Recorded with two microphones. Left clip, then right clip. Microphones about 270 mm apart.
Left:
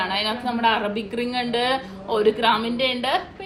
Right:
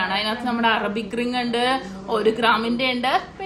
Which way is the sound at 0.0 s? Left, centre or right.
Right.